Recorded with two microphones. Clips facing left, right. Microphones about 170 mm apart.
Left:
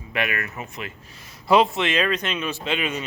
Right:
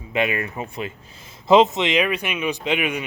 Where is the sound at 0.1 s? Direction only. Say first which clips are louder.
Right 4 dB; 25° right (ahead or behind).